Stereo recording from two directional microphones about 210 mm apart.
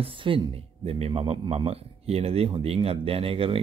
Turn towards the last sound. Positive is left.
turn(degrees=-25)  # may be behind; listen again after turning